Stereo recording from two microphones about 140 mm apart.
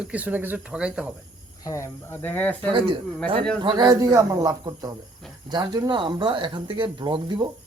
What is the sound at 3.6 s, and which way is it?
A man's voice, 30° right (ahead or behind).